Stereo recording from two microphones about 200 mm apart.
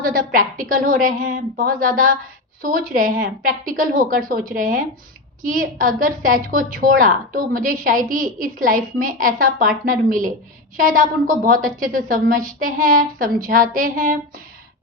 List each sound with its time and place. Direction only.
0.0 s a woman's voice: 45° right (ahead or behind)